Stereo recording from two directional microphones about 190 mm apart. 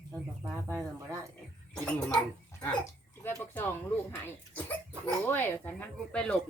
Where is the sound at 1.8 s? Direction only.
5° left (ahead or behind).